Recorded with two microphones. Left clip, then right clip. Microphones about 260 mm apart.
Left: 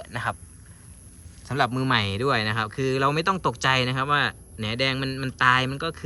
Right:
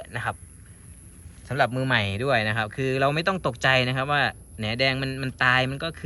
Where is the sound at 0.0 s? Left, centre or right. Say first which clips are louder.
Left 1 dB; centre.